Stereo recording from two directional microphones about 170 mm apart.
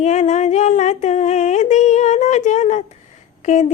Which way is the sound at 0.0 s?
45° left (ahead or behind).